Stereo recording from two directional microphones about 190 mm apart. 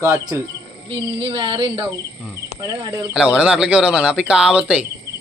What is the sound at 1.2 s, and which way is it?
Speech, 25° right (ahead or behind).